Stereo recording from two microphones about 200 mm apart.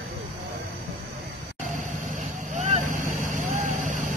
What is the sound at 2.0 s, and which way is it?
Vehicle, 40° right (ahead or behind).